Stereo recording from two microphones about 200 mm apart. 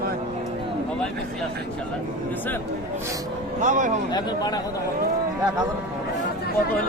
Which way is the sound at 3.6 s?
40° right (ahead or behind).